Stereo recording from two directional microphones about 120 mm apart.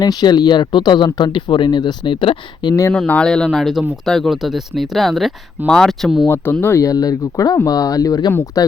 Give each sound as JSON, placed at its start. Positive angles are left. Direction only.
{"t": 0.0, "sound": "speech", "side_deg": 35}
{"t": 3.1, "sound": "speech", "side_deg": 10}
{"t": 6.2, "sound": "speech", "side_deg": 20}